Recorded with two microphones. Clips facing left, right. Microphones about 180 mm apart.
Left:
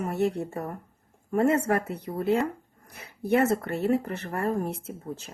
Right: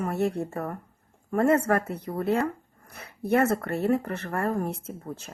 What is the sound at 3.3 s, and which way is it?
A woman's voice, 50° right (ahead or behind).